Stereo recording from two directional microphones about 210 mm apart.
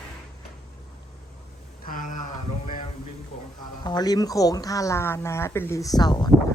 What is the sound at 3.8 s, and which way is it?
Speech, 20° left (ahead or behind).